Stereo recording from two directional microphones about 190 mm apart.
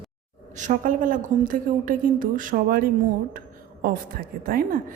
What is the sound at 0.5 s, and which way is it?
A woman's voice, 40° right (ahead or behind).